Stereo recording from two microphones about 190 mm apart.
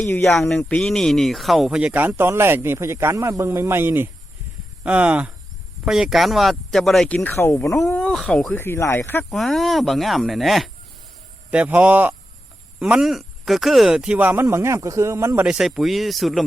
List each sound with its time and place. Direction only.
0.0 s speech: 5° left (ahead or behind)
7.2 s speech: 10° left (ahead or behind)
7.9 s speech: 5° left (ahead or behind)
9.3 s speech: centre (ahead or behind)